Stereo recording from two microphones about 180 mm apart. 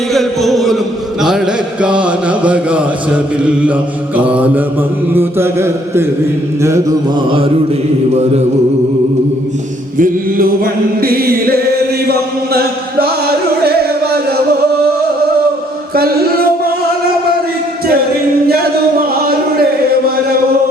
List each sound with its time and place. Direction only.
0.1 s music: centre (ahead or behind)
1.8 s chant: 5° right (ahead or behind)
10.0 s chant: 55° right (ahead or behind)
16.0 s music: 55° right (ahead or behind)